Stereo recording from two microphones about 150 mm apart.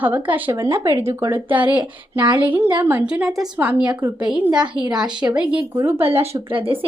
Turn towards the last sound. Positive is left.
turn(degrees=-35)  # may be behind; listen again after turning